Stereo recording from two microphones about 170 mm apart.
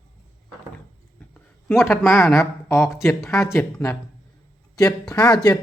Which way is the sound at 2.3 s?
15° left (ahead or behind).